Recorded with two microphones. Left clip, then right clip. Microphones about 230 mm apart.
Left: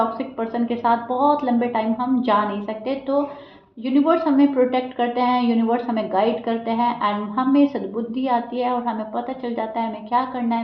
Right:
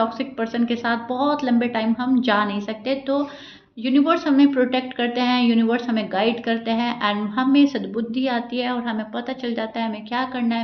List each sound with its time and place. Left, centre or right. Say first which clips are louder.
0.2 s a woman's voice: even; right